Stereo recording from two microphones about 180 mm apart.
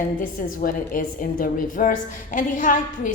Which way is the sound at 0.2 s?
50° left (ahead or behind).